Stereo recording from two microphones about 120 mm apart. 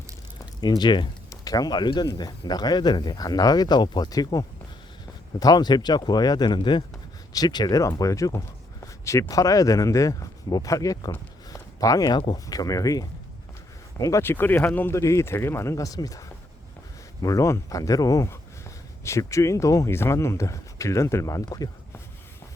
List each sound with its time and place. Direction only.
0.6 s speech: 35° left (ahead or behind)
11.4 s a sound: 30° left (ahead or behind)
12.5 s speech: 30° left (ahead or behind)
17.2 s speech: 25° left (ahead or behind)